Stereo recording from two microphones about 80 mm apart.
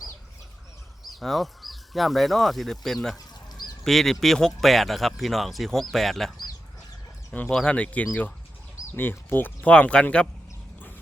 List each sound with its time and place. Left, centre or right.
1.1 s speech: centre
7.4 s speech: centre
9.0 s speech: left